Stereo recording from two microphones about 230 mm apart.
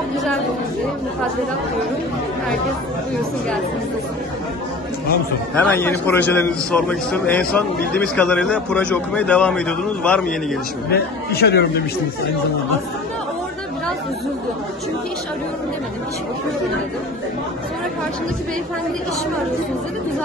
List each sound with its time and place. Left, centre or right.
5.6 s a man's voice: centre
10.9 s speech: left